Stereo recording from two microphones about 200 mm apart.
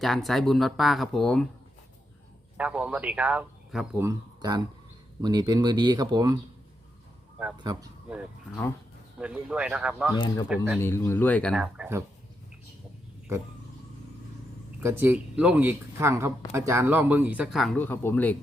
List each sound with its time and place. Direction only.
0.0 s speech: centre (ahead or behind)
2.6 s a man's voice: 5° right (ahead or behind)
7.6 s speech: 20° right (ahead or behind)
9.1 s speech: 5° right (ahead or behind)
10.8 s speech: 10° left (ahead or behind)
11.5 s speech: 5° right (ahead or behind)
14.8 s a man's voice: 10° right (ahead or behind)
17.8 s speech: 10° left (ahead or behind)